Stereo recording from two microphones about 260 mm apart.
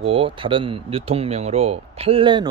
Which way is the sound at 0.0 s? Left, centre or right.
Right.